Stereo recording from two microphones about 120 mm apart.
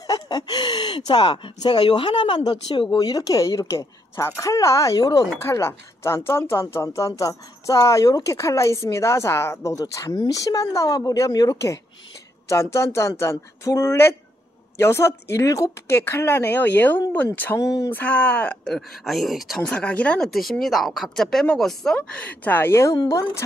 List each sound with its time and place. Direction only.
0.0 s speech: 30° left (ahead or behind)
5.4 s speech: 20° left (ahead or behind); by 19.8 s centre (ahead or behind)
19.8 s speech: 10° left (ahead or behind)